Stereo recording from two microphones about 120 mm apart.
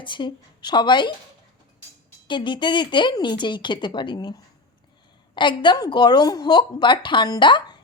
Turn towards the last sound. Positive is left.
turn(degrees=40)  # may be behind; listen again after turning